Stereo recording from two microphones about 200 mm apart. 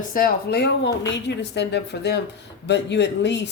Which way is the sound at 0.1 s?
45° left (ahead or behind).